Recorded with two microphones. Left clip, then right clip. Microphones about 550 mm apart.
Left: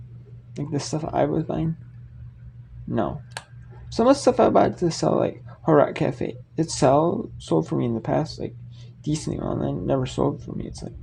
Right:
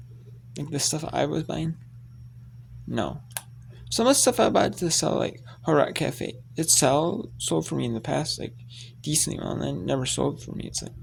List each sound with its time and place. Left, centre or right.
0.5 s speech: right
2.9 s speech: right